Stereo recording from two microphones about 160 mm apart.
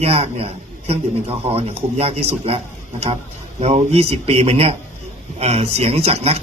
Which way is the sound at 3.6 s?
40° right (ahead or behind).